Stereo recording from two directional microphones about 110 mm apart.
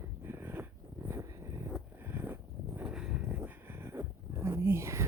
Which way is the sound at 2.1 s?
20° right (ahead or behind).